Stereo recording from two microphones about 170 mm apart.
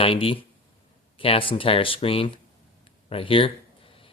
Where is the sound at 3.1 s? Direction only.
30° left (ahead or behind).